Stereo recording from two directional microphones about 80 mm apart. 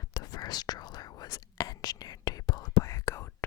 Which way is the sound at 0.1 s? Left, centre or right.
Left.